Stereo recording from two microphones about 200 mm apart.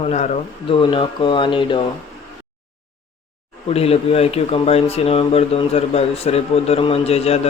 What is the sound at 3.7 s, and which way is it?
Speech, 30° left (ahead or behind).